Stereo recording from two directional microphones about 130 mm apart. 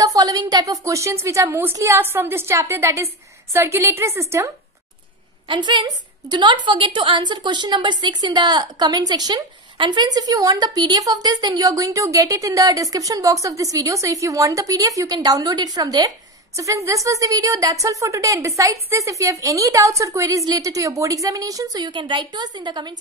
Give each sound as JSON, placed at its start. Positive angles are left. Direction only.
{"t": 0.0, "sound": "a woman's voice", "side_deg": -30}
{"t": 5.5, "sound": "a woman's voice", "side_deg": -35}